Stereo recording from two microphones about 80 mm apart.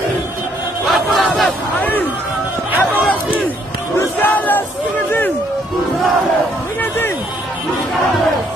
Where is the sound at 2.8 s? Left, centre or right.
Left.